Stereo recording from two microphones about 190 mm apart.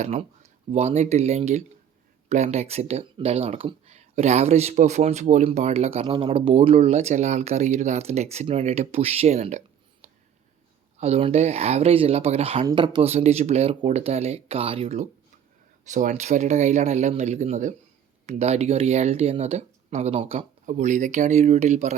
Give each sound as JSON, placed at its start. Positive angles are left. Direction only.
{"t": 0.0, "sound": "speech", "side_deg": -35}